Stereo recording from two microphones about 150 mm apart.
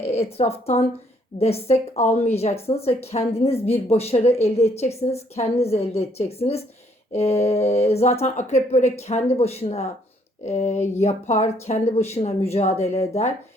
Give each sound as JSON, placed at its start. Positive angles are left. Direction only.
{"t": 0.0, "sound": "a woman's voice", "side_deg": 45}